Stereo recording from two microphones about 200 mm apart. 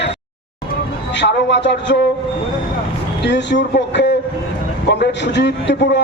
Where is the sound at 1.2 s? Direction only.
60° left (ahead or behind).